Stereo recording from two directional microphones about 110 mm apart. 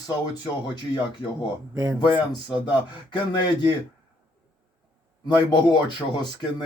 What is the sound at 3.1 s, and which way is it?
Speech, 45° left (ahead or behind).